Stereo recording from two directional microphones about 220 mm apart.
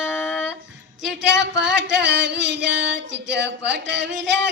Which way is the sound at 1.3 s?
55° right (ahead or behind).